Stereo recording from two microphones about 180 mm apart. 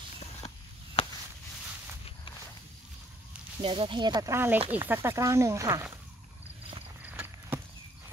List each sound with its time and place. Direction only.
1.0 s a sound: 30° left (ahead or behind)
3.6 s speech: 30° right (ahead or behind)
7.1 s clip-clop: 10° right (ahead or behind)